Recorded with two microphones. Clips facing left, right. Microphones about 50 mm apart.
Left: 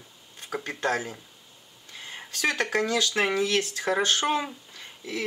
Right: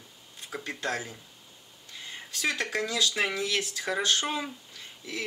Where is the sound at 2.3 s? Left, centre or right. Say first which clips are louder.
Left 4 dB; left.